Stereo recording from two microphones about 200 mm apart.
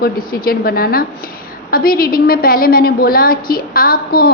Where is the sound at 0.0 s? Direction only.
45° left (ahead or behind).